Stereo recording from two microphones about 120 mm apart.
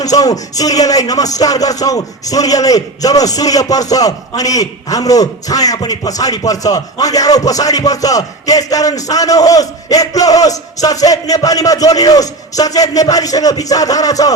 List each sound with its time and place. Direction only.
0.0 s a man's voice: 30° left (ahead or behind)